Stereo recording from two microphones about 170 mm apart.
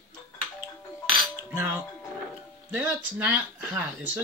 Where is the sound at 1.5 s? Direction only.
15° right (ahead or behind).